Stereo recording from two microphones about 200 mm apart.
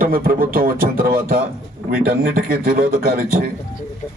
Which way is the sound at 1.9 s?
50° right (ahead or behind).